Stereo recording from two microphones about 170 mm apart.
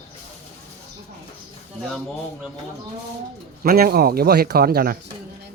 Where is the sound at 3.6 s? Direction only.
60° right (ahead or behind).